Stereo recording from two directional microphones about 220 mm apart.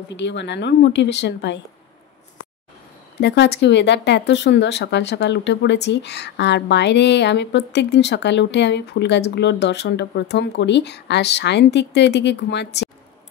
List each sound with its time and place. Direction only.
0.1 s speech: 55° left (ahead or behind)
3.2 s speech: 50° left (ahead or behind)